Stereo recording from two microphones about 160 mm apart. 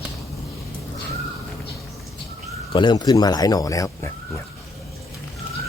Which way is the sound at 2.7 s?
30° left (ahead or behind).